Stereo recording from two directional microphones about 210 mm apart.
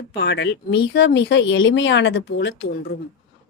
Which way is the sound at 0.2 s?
50° left (ahead or behind).